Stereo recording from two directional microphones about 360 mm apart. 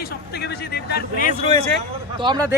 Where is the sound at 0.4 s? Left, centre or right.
Left.